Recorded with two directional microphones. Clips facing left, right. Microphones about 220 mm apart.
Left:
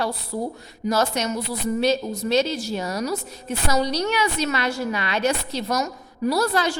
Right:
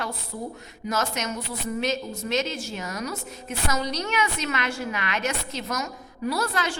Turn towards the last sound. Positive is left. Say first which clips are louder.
# left 6 dB
turn(degrees=40)  # may be behind; listen again after turning